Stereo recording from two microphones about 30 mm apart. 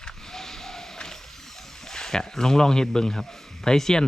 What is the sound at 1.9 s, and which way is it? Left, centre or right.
Speech, centre.